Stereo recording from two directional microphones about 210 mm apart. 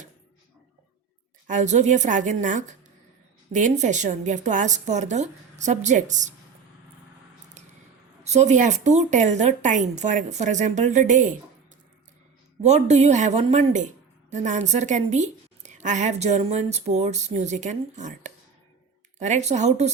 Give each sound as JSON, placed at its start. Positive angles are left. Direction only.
{"t": 1.5, "sound": "a woman's voice", "side_deg": -35}
{"t": 8.2, "sound": "a woman's voice", "side_deg": -30}
{"t": 12.6, "sound": "a woman's voice", "side_deg": -30}